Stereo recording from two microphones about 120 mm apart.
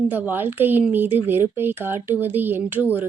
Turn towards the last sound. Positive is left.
turn(degrees=-15)  # may be behind; listen again after turning